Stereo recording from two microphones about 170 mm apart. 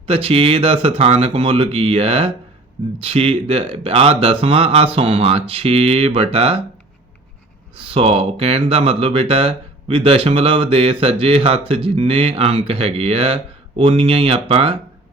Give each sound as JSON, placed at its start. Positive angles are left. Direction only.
{"t": 0.1, "sound": "speech", "side_deg": -35}
{"t": 7.8, "sound": "speech", "side_deg": -35}